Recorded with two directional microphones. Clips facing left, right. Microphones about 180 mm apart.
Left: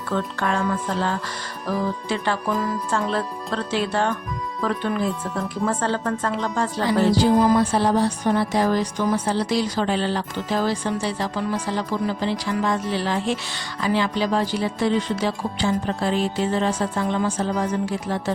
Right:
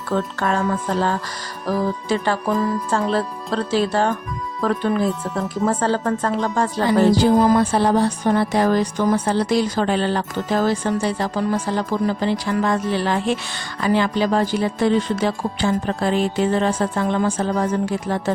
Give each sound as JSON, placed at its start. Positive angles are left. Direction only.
{"t": 0.1, "sound": "speech", "side_deg": -40}
{"t": 2.0, "sound": "speech", "side_deg": -40}